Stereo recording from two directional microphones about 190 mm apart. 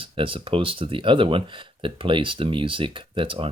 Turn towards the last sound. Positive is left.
turn(degrees=-25)  # may be behind; listen again after turning